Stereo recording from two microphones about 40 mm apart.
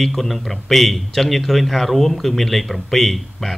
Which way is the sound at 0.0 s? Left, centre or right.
Centre.